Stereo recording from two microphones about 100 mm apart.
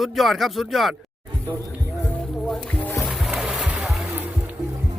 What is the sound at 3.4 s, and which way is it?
Music, 15° right (ahead or behind).